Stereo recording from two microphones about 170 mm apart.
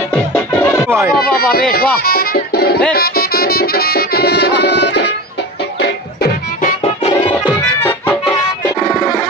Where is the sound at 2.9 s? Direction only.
65° left (ahead or behind); by 5.0 s 80° left.